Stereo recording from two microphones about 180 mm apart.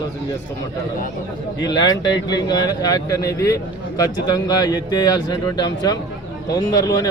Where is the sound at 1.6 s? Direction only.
20° left (ahead or behind).